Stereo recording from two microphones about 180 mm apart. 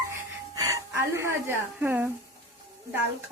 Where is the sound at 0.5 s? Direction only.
20° right (ahead or behind).